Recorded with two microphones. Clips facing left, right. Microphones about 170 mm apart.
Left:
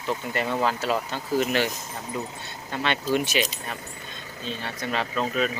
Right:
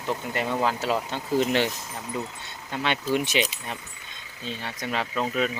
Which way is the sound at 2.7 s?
15° right (ahead or behind).